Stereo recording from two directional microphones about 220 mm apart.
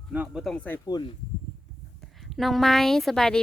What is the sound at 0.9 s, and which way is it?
Speech, 20° left (ahead or behind).